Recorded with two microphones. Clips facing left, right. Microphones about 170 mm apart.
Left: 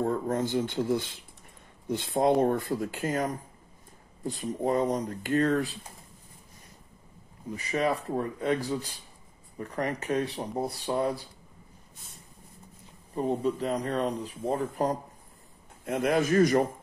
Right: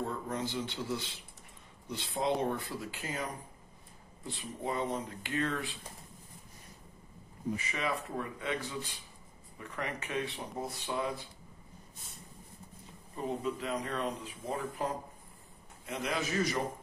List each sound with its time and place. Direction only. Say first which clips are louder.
0.0 s speech: left 8 dB; 50° left (ahead or behind)
7.5 s speech: left 9 dB; 40° left (ahead or behind)
13.1 s speech: left 7 dB; 35° left (ahead or behind)
15.8 s speech: left 10 dB; 50° left (ahead or behind)